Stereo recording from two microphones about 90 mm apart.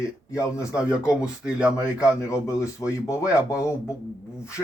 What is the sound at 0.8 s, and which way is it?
Speech, 10° right (ahead or behind).